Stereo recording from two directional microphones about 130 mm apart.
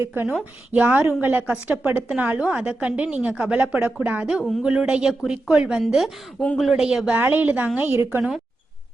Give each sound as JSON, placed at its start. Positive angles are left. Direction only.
{"t": 0.0, "sound": "a woman's voice", "side_deg": -20}
{"t": 7.2, "sound": "a woman's voice", "side_deg": -15}